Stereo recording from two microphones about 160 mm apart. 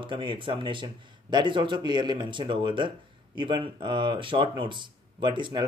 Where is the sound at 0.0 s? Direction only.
30° right (ahead or behind).